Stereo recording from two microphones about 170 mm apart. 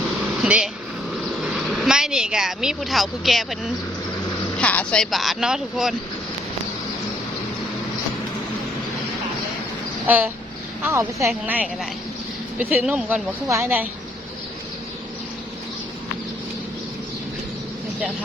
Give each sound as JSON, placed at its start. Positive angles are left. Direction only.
{"t": 0.4, "sound": "speech", "side_deg": -5}
{"t": 1.1, "sound": "a sound", "side_deg": -5}
{"t": 4.5, "sound": "speech", "side_deg": 10}
{"t": 10.1, "sound": "speech", "side_deg": -10}